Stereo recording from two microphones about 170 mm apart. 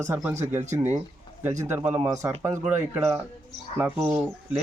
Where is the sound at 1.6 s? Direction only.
15° right (ahead or behind).